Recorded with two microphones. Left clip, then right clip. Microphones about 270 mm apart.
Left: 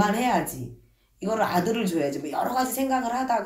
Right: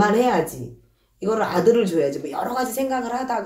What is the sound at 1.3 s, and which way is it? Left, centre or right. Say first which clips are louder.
Speech: right 7 dB; left.